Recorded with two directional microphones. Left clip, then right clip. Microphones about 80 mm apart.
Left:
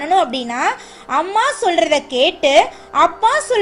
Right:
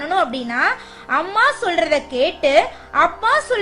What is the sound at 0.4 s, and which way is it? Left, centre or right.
Speech, left.